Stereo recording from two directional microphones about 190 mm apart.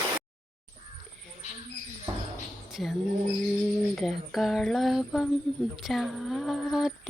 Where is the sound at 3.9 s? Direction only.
Centre (ahead or behind).